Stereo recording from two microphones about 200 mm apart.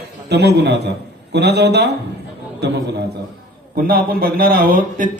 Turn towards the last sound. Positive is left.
turn(degrees=-50)  # may be behind; listen again after turning